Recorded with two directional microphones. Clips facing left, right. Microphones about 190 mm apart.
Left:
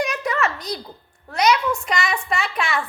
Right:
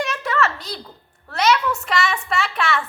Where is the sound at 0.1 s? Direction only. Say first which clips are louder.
Right 1 dB; 15° left (ahead or behind).